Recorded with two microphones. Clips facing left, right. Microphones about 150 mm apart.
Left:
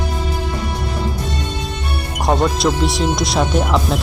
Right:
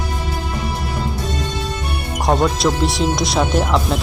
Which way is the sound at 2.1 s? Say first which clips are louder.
Even; centre (ahead or behind).